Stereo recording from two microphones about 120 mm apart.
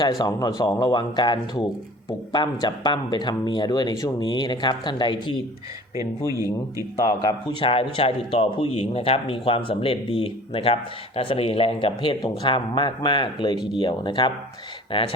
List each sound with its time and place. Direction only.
0.2 s speech: 30° left (ahead or behind)
6.0 s speech: 25° right (ahead or behind)
7.0 s speech: 30° left (ahead or behind)
7.6 s speech: 50° left (ahead or behind)